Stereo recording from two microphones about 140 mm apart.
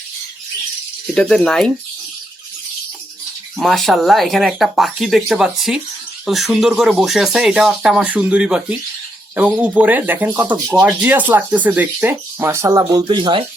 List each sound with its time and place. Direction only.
1.1 s speech: 5° left (ahead or behind)
3.6 s speech: centre (ahead or behind); by 13.4 s 35° right (ahead or behind)